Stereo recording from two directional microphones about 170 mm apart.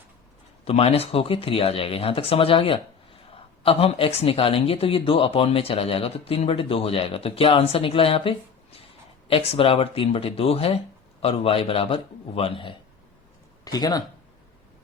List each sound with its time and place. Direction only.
0.6 s speech: 35° left (ahead or behind)